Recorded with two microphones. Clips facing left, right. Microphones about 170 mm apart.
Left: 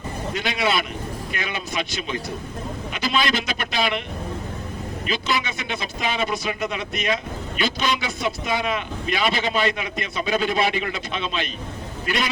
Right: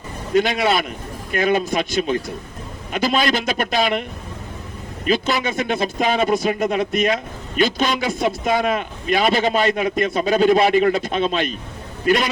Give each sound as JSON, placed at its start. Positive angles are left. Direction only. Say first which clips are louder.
{"t": 0.3, "sound": "speech", "louder": "right 7 dB", "side_deg": -50}
{"t": 5.0, "sound": "speech", "louder": "right 6 dB", "side_deg": -45}